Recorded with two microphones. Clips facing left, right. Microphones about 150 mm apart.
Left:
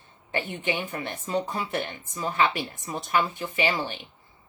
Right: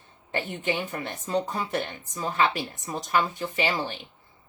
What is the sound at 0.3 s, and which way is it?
Speech, 40° right (ahead or behind).